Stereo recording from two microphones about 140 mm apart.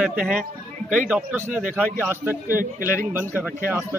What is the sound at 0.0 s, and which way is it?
Speech, 5° right (ahead or behind).